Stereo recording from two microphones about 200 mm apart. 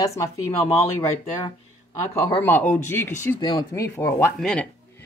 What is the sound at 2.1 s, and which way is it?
Speech, 10° left (ahead or behind).